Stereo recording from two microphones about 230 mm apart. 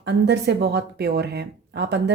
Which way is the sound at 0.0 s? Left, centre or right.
Right.